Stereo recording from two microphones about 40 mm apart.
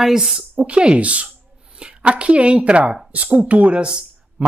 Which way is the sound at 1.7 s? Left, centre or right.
Right.